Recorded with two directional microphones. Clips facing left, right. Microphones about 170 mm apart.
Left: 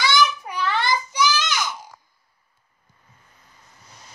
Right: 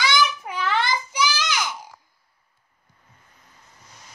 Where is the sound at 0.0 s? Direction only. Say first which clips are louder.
Left 2 dB; 20° right (ahead or behind).